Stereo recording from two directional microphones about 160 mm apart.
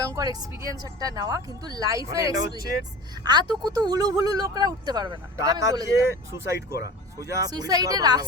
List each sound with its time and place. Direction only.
0.0 s speech: 20° right (ahead or behind)